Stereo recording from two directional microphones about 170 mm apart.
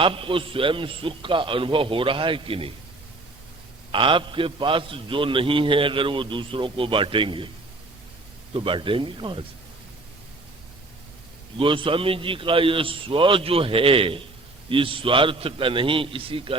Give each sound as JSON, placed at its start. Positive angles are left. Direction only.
{"t": 0.0, "sound": "a man's voice", "side_deg": -30}
{"t": 3.9, "sound": "a man's voice", "side_deg": -30}
{"t": 8.5, "sound": "a man's voice", "side_deg": -30}
{"t": 11.5, "sound": "a man's voice", "side_deg": -30}